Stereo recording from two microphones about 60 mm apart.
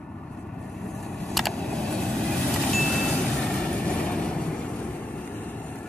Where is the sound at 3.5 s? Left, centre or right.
Centre.